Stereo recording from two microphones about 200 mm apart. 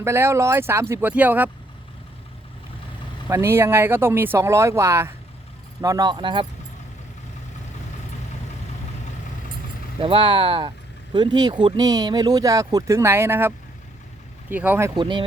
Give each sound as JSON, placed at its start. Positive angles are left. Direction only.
{"t": 0.0, "sound": "speech", "side_deg": -15}
{"t": 3.2, "sound": "speech", "side_deg": -10}
{"t": 10.0, "sound": "speech", "side_deg": -25}
{"t": 14.5, "sound": "speech", "side_deg": -10}
{"t": 14.9, "sound": "speech", "side_deg": -25}